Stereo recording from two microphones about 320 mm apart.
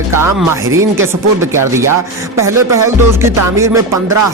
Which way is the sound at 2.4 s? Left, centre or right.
Centre.